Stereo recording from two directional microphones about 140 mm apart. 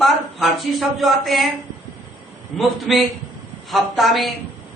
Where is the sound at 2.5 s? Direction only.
Centre (ahead or behind).